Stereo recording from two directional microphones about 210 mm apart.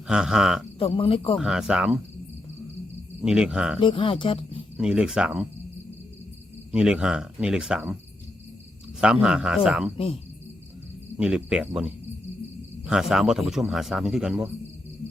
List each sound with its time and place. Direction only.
0.1 s speech: 5° right (ahead or behind)
0.8 s speech: 25° left (ahead or behind)
1.4 s speech: 5° right (ahead or behind)
3.2 s speech: 5° right (ahead or behind)
3.8 s speech: 25° left (ahead or behind)
4.8 s speech: 5° right (ahead or behind)
6.7 s speech: 5° right (ahead or behind)
9.0 s speech: 5° right (ahead or behind)
11.2 s speech: 5° right (ahead or behind)